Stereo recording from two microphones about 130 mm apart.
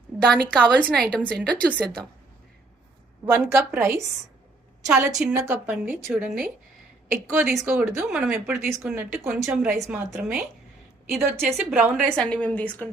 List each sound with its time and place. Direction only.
0.1 s a sound: centre (ahead or behind)
0.6 s a woman's voice: 10° left (ahead or behind)
3.2 s a woman's voice: 15° right (ahead or behind)
4.9 s a woman's voice: 5° right (ahead or behind)
5.4 s a woman's voice: 20° right (ahead or behind); by 9.9 s centre (ahead or behind)
9.9 s speech: 15° right (ahead or behind)
11.1 s a woman's voice: centre (ahead or behind)
12.0 s a woman's voice: 5° left (ahead or behind)